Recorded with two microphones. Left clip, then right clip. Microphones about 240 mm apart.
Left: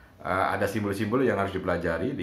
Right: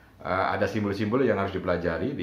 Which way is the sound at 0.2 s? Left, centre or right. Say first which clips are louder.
Even; centre.